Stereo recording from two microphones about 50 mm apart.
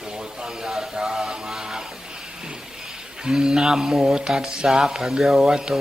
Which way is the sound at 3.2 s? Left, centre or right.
Centre.